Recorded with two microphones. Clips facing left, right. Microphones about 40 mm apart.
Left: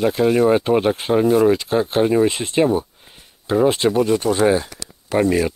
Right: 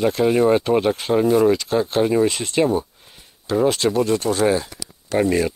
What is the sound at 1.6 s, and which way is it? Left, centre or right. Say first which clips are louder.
Speech: left 1 dB; left.